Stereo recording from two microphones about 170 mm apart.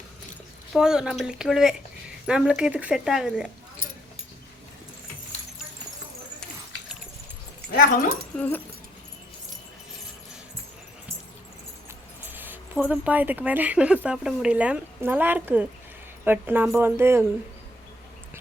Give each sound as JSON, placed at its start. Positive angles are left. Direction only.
{"t": 0.7, "sound": "speech", "side_deg": -5}
{"t": 7.7, "sound": "speech", "side_deg": 55}
{"t": 8.4, "sound": "dog", "side_deg": 10}
{"t": 12.2, "sound": "speech", "side_deg": -10}